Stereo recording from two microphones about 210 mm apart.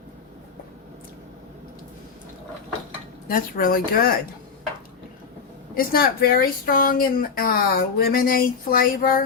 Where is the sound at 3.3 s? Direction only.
45° left (ahead or behind).